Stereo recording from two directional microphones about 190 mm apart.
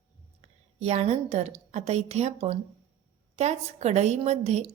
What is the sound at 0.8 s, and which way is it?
A woman's voice, 35° right (ahead or behind).